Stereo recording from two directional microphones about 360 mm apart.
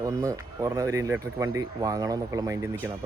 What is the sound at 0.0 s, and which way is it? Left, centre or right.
Speech, centre.